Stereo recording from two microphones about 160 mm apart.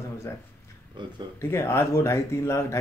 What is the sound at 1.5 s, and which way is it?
Speech, 15° left (ahead or behind).